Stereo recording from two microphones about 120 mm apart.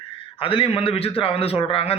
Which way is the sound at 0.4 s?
50° left (ahead or behind).